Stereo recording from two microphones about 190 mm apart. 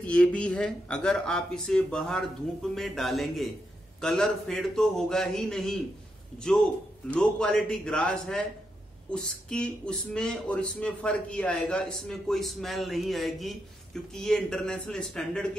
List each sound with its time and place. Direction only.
0.0 s speech: 5° left (ahead or behind)
7.1 s speech: 5° left (ahead or behind)